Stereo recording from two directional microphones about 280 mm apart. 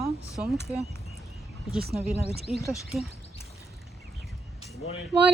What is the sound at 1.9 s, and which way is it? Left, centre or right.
A woman's voice, centre.